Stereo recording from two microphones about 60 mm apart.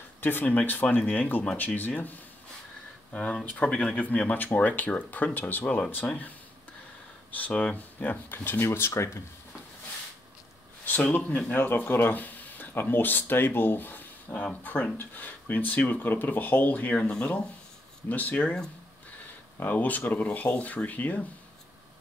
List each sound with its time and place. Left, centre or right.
0.2 s speech: left
3.1 s speech: left
7.3 s speech: left
8.6 s speech: left
11.1 s speech: left
11.5 s speech: left
14.3 s speech: centre
14.6 s speech: left
17.0 s speech: centre
19.6 s speech: left